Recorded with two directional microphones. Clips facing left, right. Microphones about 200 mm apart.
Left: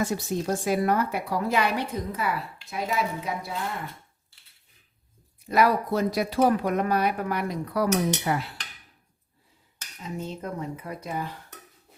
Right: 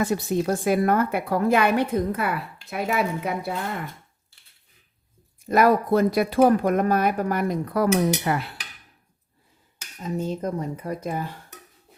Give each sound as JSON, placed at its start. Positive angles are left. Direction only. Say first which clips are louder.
{"t": 0.0, "sound": "a woman's voice", "louder": "right 4 dB", "side_deg": -60}
{"t": 5.5, "sound": "speech", "louder": "right 4 dB", "side_deg": -50}
{"t": 10.0, "sound": "speech", "louder": "right 7 dB", "side_deg": -40}